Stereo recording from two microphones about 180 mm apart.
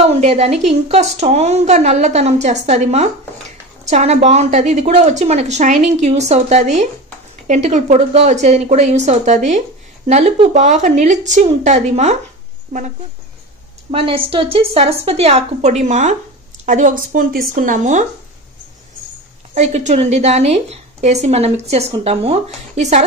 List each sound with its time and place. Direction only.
0.0 s a woman's voice: 35° right (ahead or behind)
13.9 s a woman's voice: 30° right (ahead or behind)
19.5 s a woman's voice: 40° right (ahead or behind)